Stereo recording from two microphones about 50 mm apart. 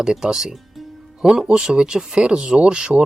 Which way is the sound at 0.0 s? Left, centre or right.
Centre.